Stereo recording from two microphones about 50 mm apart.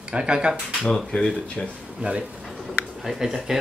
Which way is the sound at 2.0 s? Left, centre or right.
Right.